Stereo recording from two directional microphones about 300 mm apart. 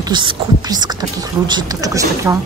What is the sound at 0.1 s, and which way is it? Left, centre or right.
Speech, centre.